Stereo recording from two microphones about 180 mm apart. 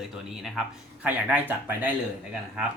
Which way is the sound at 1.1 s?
10° right (ahead or behind).